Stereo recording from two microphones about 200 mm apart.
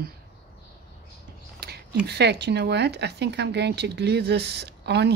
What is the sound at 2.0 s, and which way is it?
Speech, 55° right (ahead or behind).